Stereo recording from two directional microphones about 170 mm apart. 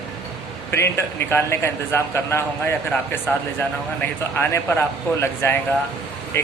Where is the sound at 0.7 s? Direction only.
15° left (ahead or behind).